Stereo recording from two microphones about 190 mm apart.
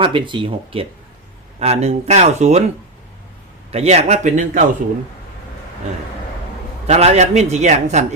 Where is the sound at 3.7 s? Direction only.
35° right (ahead or behind).